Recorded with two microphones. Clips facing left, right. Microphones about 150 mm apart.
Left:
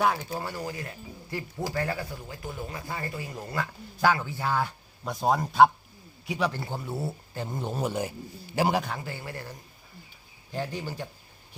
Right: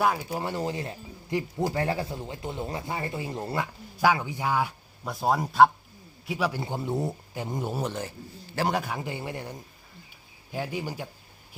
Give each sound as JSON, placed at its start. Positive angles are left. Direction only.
{"t": 0.0, "sound": "a man's voice", "side_deg": 0}
{"t": 0.3, "sound": "speech", "side_deg": -20}
{"t": 3.9, "sound": "a man's voice", "side_deg": -10}
{"t": 6.6, "sound": "a man's voice", "side_deg": -20}
{"t": 7.8, "sound": "a man's voice", "side_deg": 10}
{"t": 8.6, "sound": "a man's voice", "side_deg": 0}
{"t": 9.0, "sound": "a man's voice", "side_deg": -20}